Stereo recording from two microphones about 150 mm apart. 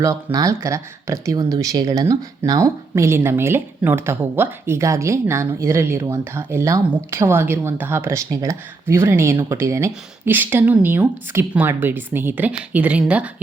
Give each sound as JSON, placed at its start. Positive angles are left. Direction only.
{"t": 0.0, "sound": "speech", "side_deg": -20}